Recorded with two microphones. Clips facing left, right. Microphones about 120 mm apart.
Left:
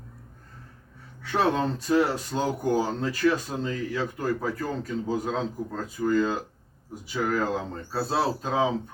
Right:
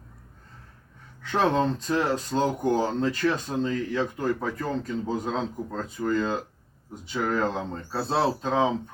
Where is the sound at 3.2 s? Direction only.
25° right (ahead or behind).